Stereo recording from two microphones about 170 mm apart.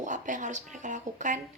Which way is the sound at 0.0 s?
45° right (ahead or behind).